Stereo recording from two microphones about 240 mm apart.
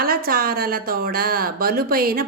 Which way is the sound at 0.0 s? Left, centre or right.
Right.